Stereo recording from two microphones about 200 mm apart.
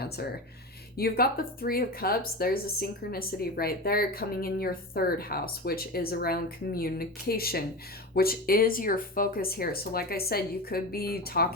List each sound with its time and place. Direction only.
0.9 s speech: 50° left (ahead or behind)